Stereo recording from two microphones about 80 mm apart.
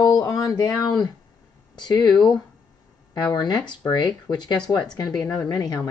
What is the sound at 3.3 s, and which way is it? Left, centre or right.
Speech, left.